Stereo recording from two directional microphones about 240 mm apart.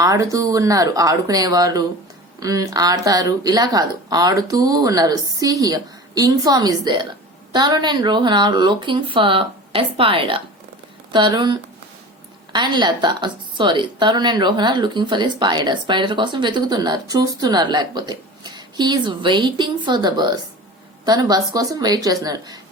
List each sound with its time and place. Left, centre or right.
0.0 s a woman's voice: centre